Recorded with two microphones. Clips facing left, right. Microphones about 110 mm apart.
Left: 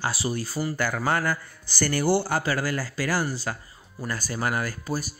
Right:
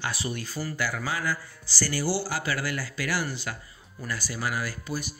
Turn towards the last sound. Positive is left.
turn(degrees=40)  # may be behind; listen again after turning